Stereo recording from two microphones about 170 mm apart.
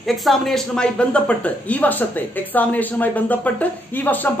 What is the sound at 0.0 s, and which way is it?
Speech, centre (ahead or behind).